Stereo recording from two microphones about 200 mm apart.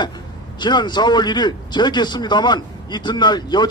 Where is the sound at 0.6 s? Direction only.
20° left (ahead or behind).